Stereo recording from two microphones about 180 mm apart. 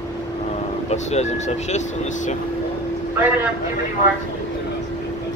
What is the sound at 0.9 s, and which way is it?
Speech, 40° left (ahead or behind).